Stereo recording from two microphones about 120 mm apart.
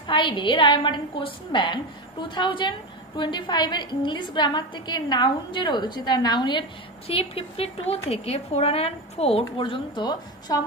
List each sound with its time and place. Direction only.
0.0 s a woman's voice: 40° left (ahead or behind)
7.1 s speech: 55° left (ahead or behind)
9.6 s a woman's voice: 40° left (ahead or behind)